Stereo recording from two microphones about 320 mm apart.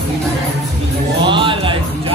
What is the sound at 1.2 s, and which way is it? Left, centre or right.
Music, centre.